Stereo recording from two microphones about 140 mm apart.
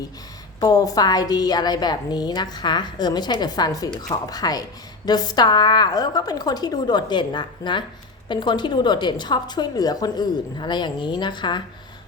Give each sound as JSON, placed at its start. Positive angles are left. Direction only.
{"t": 0.6, "sound": "a woman's voice", "side_deg": 25}